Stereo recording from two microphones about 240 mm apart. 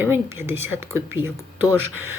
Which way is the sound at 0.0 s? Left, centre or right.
Centre.